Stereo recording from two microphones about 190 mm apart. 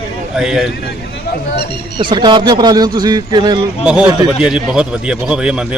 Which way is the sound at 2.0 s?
25° right (ahead or behind).